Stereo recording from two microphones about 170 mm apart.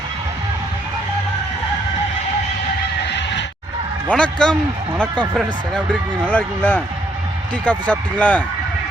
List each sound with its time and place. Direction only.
3.0 s neigh: 90° left
4.1 s a man's voice: 5° left (ahead or behind)